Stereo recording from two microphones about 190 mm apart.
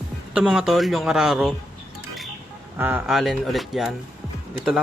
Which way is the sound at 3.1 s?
Centre (ahead or behind).